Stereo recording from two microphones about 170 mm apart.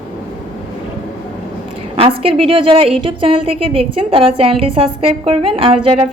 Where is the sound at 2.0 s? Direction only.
35° right (ahead or behind).